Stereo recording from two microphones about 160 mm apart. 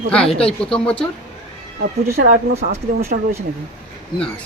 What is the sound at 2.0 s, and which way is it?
Speech, 65° right (ahead or behind).